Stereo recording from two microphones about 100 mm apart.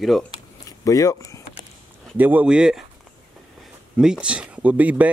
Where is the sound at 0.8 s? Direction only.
35° left (ahead or behind).